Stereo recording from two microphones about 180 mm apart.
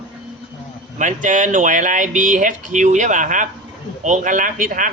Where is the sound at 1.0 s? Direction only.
45° right (ahead or behind).